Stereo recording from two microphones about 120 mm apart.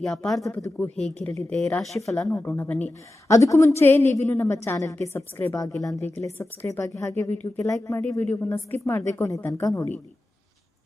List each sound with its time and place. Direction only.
0.0 s speech: 5° left (ahead or behind)
0.4 s a woman's voice: 25° left (ahead or behind)
0.8 s a woman's voice: 10° left (ahead or behind)
2.0 s a woman's voice: 25° left (ahead or behind)
3.2 s a woman's voice: 25° left (ahead or behind)